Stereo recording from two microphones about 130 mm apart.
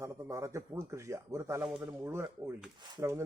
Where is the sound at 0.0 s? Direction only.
20° right (ahead or behind).